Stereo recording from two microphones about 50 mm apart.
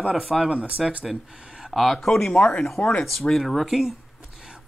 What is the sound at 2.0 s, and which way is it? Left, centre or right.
Speech, centre.